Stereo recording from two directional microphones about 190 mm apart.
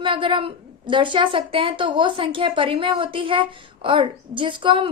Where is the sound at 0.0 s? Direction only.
25° right (ahead or behind).